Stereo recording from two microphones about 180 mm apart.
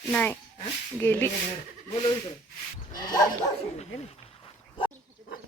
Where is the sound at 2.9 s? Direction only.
20° left (ahead or behind).